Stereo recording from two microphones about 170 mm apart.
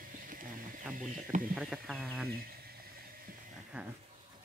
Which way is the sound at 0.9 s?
50° right (ahead or behind).